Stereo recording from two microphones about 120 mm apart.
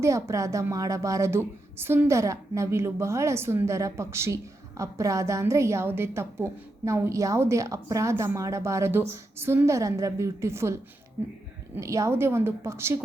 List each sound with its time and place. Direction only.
0.0 s a woman's voice: 25° right (ahead or behind)